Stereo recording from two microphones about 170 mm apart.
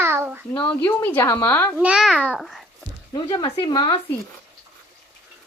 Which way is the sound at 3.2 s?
25° left (ahead or behind).